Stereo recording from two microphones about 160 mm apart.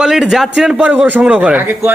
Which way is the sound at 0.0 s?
5° right (ahead or behind).